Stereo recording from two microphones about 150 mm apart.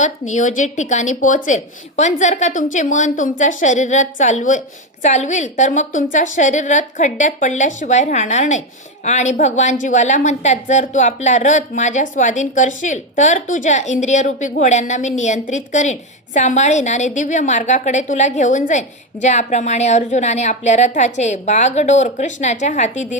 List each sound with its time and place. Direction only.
0.0 s a woman's voice: 55° left (ahead or behind)